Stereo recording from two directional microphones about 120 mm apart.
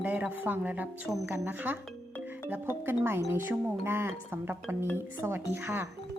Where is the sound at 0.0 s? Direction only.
15° right (ahead or behind).